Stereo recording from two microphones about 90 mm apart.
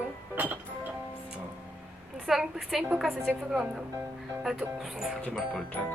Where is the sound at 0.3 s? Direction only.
20° right (ahead or behind).